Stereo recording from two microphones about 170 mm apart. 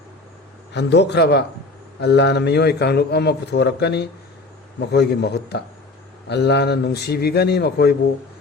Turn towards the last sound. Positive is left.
turn(degrees=75)  # may be behind; listen again after turning